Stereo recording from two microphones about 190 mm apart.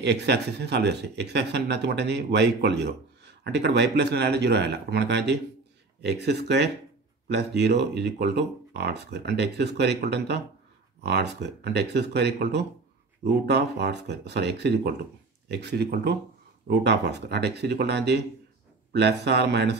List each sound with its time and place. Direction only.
0.0 s speech: 65° right (ahead or behind)